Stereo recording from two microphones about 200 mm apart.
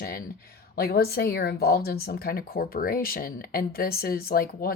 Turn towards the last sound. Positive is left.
turn(degrees=50)  # may be behind; listen again after turning